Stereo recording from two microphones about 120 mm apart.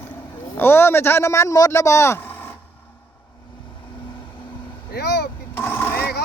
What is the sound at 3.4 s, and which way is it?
Vehicle, 40° left (ahead or behind).